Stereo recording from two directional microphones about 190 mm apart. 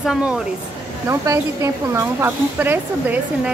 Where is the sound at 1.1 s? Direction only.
15° right (ahead or behind).